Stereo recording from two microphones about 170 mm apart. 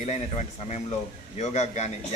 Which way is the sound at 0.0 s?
40° left (ahead or behind).